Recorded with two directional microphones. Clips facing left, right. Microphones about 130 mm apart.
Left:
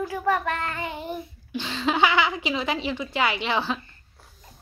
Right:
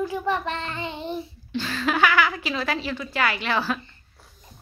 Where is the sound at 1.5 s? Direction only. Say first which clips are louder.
Even; 20° left (ahead or behind).